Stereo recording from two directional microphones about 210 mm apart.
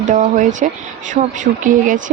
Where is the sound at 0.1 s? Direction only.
35° right (ahead or behind).